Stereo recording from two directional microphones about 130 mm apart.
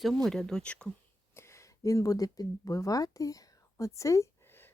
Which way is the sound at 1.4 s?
20° left (ahead or behind).